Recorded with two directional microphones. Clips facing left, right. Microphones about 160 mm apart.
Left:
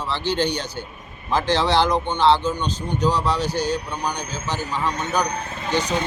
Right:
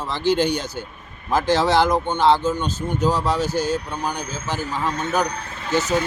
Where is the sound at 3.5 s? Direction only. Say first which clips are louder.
Right 1 dB; 15° left (ahead or behind).